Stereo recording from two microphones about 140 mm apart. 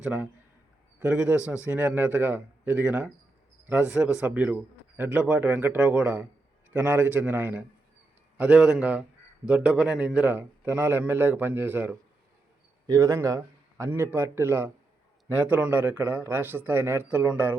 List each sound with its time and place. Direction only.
0.0 s a man's voice: 10° right (ahead or behind)